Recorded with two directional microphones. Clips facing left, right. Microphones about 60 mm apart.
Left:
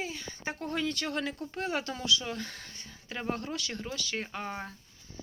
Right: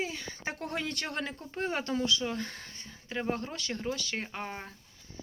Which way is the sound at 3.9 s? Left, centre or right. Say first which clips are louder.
Right 2 dB; centre.